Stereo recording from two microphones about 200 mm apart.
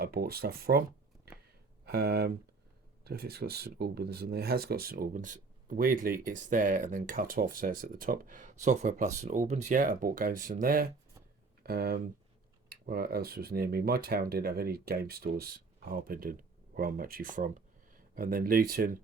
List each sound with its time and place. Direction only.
0.0 s speech: 50° right (ahead or behind)